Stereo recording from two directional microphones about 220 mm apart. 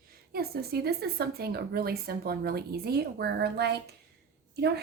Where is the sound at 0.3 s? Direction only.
45° right (ahead or behind).